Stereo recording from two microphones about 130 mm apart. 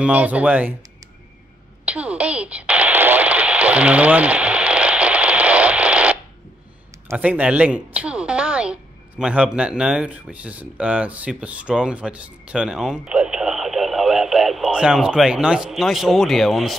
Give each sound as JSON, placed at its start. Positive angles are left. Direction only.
{"t": 0.0, "sound": "speech", "side_deg": -10}
{"t": 1.9, "sound": "radio", "side_deg": -10}
{"t": 7.2, "sound": "a woman's voice", "side_deg": -10}